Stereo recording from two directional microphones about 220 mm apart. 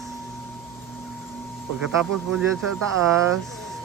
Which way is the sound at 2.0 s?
Centre (ahead or behind).